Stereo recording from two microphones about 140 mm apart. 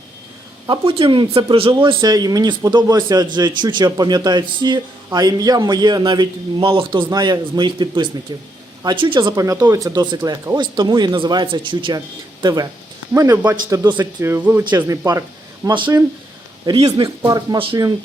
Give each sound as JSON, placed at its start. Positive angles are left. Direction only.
{"t": 0.7, "sound": "a man's voice", "side_deg": -40}
{"t": 9.3, "sound": "a man's voice", "side_deg": -25}
{"t": 15.6, "sound": "a man's voice", "side_deg": -35}